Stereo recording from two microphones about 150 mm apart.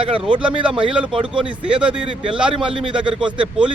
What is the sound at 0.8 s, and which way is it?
Speech, 5° right (ahead or behind).